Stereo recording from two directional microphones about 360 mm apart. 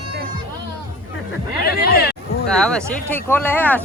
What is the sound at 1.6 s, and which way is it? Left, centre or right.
Speech, left.